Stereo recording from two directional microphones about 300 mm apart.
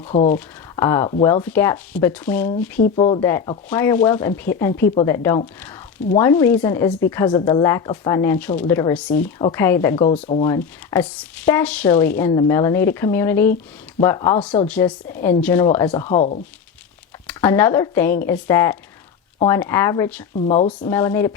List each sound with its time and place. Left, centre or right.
0.1 s speech: left
0.3 s speech: centre
2.8 s speech: centre
16.0 s speech: left
17.2 s speech: centre
20.3 s speech: centre
20.8 s speech: centre